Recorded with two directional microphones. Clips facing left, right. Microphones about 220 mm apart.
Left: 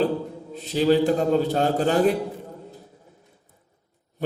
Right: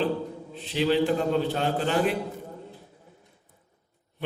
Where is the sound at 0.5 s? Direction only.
40° left (ahead or behind).